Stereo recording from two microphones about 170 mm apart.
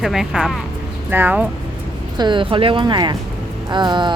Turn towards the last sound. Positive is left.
turn(degrees=-25)  # may be behind; listen again after turning